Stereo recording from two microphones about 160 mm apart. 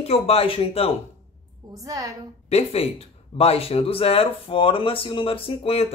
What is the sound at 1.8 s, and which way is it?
Speech, 20° right (ahead or behind).